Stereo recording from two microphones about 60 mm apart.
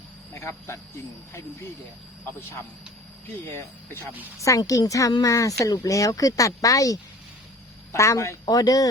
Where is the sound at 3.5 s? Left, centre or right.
Left.